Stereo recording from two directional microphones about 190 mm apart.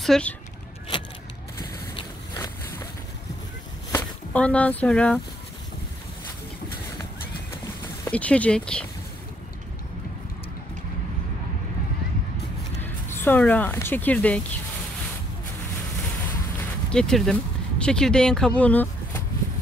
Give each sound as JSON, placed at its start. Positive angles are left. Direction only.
{"t": 0.0, "sound": "speech", "side_deg": 5}
{"t": 2.3, "sound": "boat", "side_deg": 20}
{"t": 3.9, "sound": "speech", "side_deg": 5}
{"t": 7.5, "sound": "a sound", "side_deg": 20}
{"t": 8.1, "sound": "speech", "side_deg": 5}
{"t": 12.8, "sound": "speech", "side_deg": 10}
{"t": 16.9, "sound": "speech", "side_deg": 5}